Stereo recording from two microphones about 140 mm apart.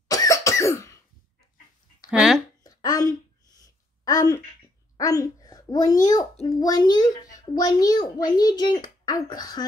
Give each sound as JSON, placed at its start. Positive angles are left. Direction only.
{"t": 0.1, "sound": "cough", "side_deg": 25}
{"t": 2.0, "sound": "speech", "side_deg": 0}
{"t": 2.6, "sound": "a sound", "side_deg": 25}
{"t": 4.9, "sound": "a child's voice", "side_deg": 25}